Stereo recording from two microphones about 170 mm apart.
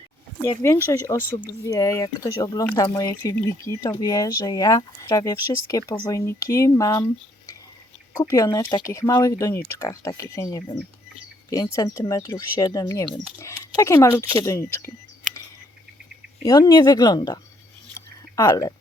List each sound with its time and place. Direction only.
0.4 s speech: 15° left (ahead or behind)
8.2 s speech: 20° left (ahead or behind)
16.4 s speech: 20° left (ahead or behind)
17.9 s a sound: 20° left (ahead or behind)